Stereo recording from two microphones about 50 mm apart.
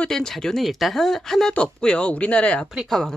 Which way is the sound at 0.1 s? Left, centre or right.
Centre.